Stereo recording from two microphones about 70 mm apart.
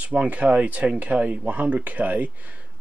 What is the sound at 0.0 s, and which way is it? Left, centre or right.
Speech, right.